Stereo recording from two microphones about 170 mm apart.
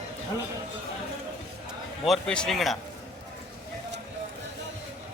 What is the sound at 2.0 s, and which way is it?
Speech, 5° left (ahead or behind).